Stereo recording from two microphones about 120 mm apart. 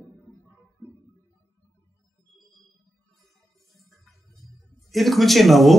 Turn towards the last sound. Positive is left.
turn(degrees=0)  # may be behind; listen again after turning